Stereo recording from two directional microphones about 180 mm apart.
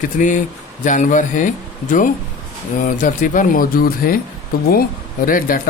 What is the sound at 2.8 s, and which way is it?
Speech, 45° left (ahead or behind).